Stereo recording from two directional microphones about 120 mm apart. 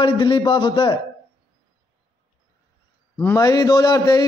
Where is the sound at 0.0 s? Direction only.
40° left (ahead or behind).